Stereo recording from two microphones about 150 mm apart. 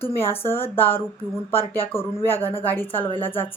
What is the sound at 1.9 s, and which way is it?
Speech, 15° left (ahead or behind).